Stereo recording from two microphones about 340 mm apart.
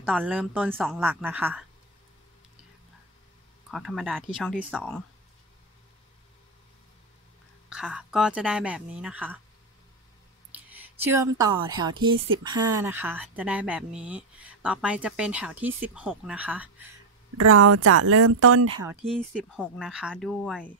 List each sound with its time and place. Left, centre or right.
0.0 s speech: centre
3.7 s speech: centre
7.7 s speech: centre
10.5 s a sound: centre
11.7 s a woman's voice: centre
17.4 s speech: right
19.0 s speech: centre